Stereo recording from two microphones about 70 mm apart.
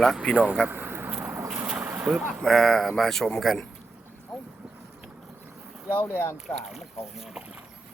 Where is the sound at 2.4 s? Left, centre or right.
Centre.